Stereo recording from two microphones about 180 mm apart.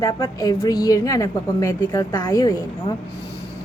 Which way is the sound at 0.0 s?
20° left (ahead or behind).